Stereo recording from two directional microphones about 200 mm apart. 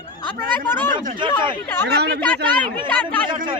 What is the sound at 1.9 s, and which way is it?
Speech, 55° right (ahead or behind).